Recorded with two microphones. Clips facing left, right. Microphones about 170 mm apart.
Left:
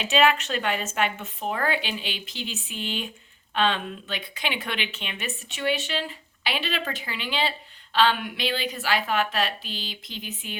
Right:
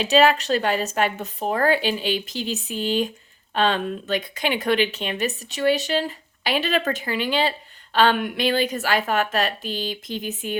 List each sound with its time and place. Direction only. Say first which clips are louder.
0.0 s speech: right 4 dB; 35° right (ahead or behind)